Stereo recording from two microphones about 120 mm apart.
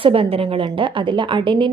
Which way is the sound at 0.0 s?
50° right (ahead or behind).